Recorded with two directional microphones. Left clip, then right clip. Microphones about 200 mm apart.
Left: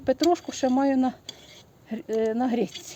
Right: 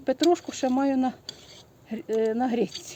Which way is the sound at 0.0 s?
30° left (ahead or behind).